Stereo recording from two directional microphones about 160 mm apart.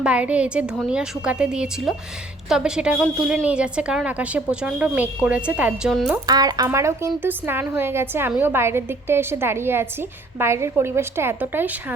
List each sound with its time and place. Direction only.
0.0 s a woman's voice: 10° right (ahead or behind)
6.2 s a woman's voice: 25° right (ahead or behind)